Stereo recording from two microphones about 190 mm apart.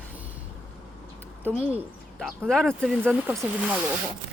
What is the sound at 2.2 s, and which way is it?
Speech, centre (ahead or behind).